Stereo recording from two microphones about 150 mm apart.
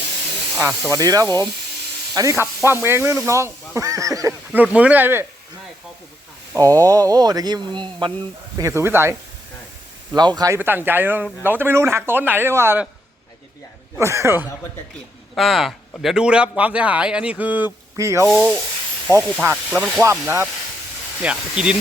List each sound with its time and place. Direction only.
0.6 s speech: 20° right (ahead or behind)
4.5 s speech: 10° right (ahead or behind)
6.5 s speech: 20° right (ahead or behind)
8.5 s speech: 20° right (ahead or behind)
10.2 s speech: 25° right (ahead or behind)
14.0 s speech: 20° right (ahead or behind)
15.4 s speech: centre (ahead or behind); by 18.3 s 20° right (ahead or behind)
18.3 s rub: 5° left (ahead or behind)
19.4 s speech: 15° right (ahead or behind)